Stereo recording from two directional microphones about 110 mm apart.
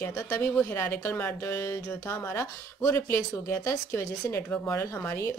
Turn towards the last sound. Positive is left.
turn(degrees=25)  # may be behind; listen again after turning